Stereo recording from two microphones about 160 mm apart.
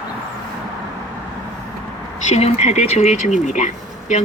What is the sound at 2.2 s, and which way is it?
Speech, 45° left (ahead or behind).